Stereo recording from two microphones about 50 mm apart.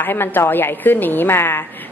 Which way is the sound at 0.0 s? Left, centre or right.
Left.